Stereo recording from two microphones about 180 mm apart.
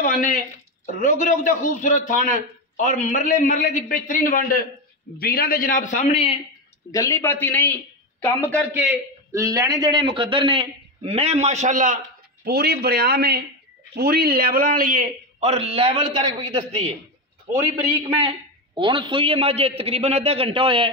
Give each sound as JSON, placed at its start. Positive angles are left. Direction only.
{"t": 0.0, "sound": "a man's voice", "side_deg": 50}
{"t": 6.9, "sound": "speech", "side_deg": 20}
{"t": 9.3, "sound": "a man's voice", "side_deg": -15}
{"t": 12.4, "sound": "a man's voice", "side_deg": -60}
{"t": 18.8, "sound": "a man's voice", "side_deg": -25}